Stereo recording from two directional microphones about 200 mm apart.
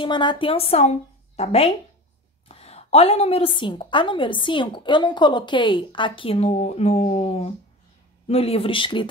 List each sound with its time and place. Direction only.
0.0 s a woman's voice: 25° left (ahead or behind)